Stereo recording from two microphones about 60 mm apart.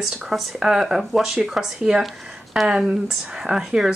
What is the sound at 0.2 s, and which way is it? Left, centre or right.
Speech, centre.